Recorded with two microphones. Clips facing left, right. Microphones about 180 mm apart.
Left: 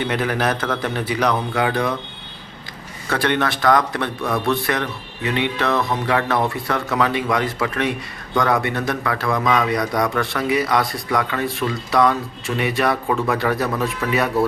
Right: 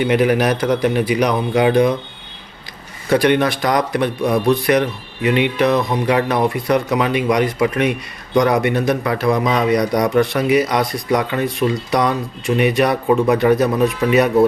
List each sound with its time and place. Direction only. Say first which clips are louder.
0.0 s speech: right 6 dB; 15° right (ahead or behind)
3.1 s a man's voice: right 6 dB; 15° right (ahead or behind)